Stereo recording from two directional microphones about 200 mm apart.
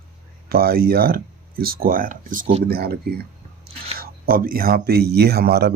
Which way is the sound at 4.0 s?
45° right (ahead or behind).